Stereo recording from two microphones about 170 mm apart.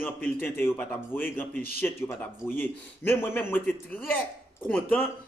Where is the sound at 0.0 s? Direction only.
10° left (ahead or behind).